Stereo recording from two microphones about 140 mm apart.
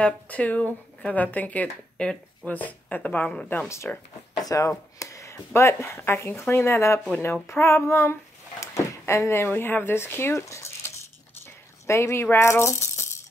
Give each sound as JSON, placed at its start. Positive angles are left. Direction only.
{"t": 0.0, "sound": "speech", "side_deg": 10}
{"t": 11.9, "sound": "speech", "side_deg": 20}